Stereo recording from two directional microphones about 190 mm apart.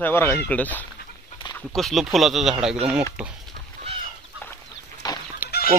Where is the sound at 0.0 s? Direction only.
10° left (ahead or behind); by 3.3 s 5° right (ahead or behind).